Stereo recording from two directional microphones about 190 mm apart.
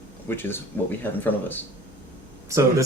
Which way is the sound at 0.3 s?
10° left (ahead or behind).